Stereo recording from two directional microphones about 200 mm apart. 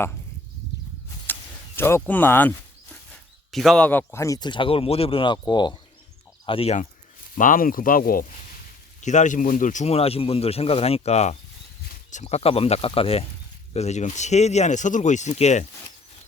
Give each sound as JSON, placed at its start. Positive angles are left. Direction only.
{"t": 1.3, "sound": "speech", "side_deg": 10}
{"t": 7.3, "sound": "speech", "side_deg": 45}